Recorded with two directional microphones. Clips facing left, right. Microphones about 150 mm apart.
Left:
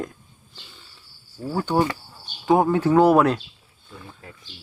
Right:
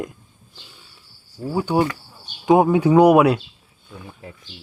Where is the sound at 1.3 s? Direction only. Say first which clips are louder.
Right 2 dB; 10° right (ahead or behind).